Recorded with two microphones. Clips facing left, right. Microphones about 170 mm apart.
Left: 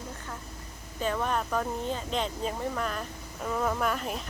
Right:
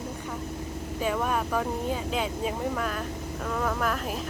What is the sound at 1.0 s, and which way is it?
Speech, 5° right (ahead or behind).